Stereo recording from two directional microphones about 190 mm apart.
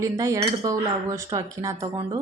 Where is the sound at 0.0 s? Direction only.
15° right (ahead or behind).